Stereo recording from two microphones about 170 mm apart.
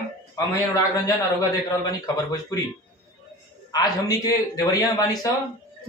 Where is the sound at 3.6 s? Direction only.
20° left (ahead or behind).